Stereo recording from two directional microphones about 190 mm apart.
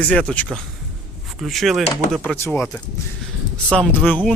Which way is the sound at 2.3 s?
10° left (ahead or behind).